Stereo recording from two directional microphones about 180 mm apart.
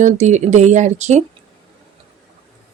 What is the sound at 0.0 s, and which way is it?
Speech, 40° right (ahead or behind).